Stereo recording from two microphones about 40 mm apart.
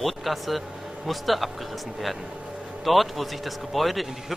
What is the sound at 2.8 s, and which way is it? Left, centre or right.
Speech, centre.